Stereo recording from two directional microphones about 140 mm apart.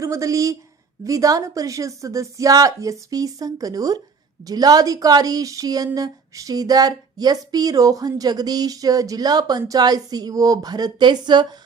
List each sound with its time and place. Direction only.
0.0 s a woman's voice: 20° right (ahead or behind)